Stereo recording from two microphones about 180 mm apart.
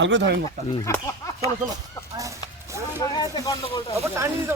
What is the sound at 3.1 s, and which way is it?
Speech, 20° left (ahead or behind).